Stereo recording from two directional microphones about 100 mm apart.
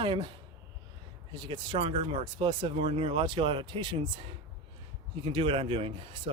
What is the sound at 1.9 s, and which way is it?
Speech, 75° right (ahead or behind).